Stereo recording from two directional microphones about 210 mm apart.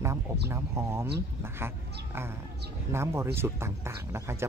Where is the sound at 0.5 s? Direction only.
10° right (ahead or behind).